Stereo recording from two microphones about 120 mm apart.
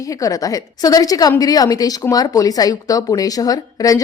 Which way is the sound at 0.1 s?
30° left (ahead or behind).